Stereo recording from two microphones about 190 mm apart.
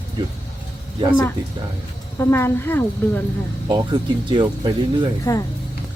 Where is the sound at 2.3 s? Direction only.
10° left (ahead or behind).